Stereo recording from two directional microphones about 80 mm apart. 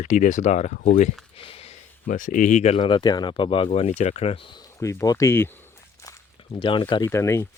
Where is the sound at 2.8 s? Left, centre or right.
Left.